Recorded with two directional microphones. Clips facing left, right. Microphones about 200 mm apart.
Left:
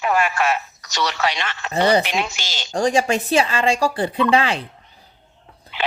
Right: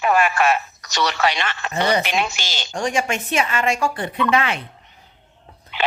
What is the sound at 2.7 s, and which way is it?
Speech, 35° left (ahead or behind).